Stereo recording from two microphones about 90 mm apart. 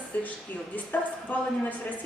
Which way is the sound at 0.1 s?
20° left (ahead or behind).